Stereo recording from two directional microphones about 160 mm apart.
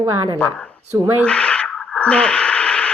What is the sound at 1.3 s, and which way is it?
Radio, 5° left (ahead or behind).